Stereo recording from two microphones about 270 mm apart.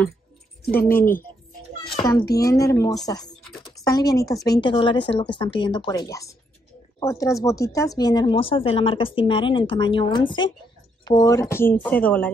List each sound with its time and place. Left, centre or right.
0.7 s speech: left
2.0 s speech: centre
3.5 s a sound: centre
3.8 s speech: centre